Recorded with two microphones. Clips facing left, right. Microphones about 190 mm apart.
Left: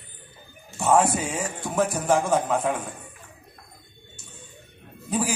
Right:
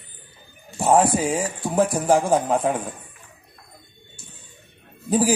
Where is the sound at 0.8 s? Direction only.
30° right (ahead or behind).